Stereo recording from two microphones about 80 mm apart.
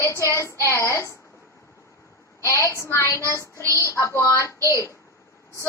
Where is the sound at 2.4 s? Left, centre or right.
Left.